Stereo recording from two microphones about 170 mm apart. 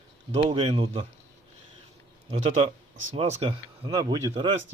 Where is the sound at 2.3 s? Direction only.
35° right (ahead or behind).